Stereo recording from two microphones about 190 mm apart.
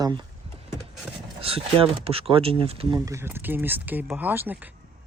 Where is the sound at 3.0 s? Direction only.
15° right (ahead or behind).